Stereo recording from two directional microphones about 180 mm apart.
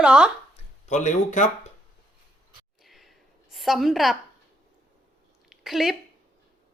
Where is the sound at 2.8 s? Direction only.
Centre (ahead or behind).